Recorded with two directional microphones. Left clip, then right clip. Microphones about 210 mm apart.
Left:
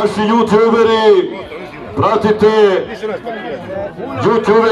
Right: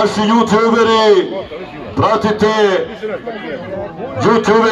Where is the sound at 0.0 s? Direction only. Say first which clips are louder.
Even; 40° right (ahead or behind).